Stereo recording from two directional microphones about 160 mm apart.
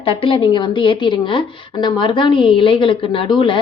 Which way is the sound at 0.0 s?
35° left (ahead or behind).